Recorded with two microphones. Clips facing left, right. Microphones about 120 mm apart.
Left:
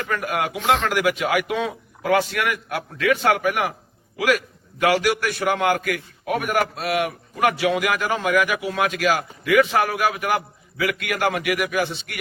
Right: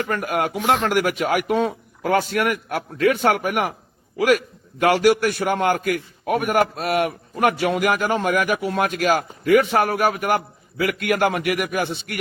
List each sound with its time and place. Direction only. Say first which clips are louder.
0.1 s a man's voice: right 2 dB; 45° right (ahead or behind)